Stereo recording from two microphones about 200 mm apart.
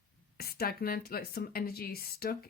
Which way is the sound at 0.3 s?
50° left (ahead or behind).